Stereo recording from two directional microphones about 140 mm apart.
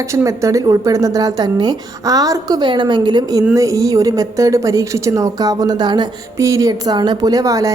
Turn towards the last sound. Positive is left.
turn(degrees=-25)  # may be behind; listen again after turning